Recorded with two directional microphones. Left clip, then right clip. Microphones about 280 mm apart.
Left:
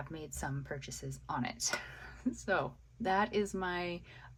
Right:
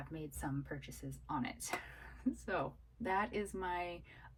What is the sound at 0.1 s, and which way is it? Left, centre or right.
Speech, centre.